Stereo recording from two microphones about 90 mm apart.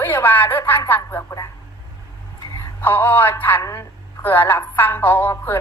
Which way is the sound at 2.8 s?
20° left (ahead or behind).